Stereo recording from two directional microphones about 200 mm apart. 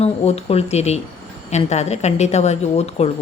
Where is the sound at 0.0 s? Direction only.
30° left (ahead or behind).